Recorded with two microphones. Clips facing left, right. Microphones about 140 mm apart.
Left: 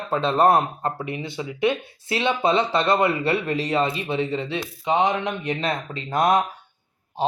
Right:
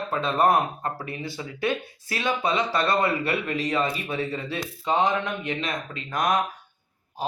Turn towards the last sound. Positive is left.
turn(degrees=25)  # may be behind; listen again after turning